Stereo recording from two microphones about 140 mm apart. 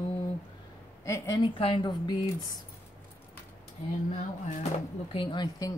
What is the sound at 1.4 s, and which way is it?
Speech, 40° left (ahead or behind).